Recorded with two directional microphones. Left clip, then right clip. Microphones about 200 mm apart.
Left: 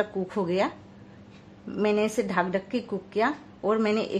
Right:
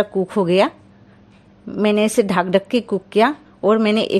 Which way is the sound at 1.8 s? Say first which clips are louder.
Right 8 dB; 40° right (ahead or behind).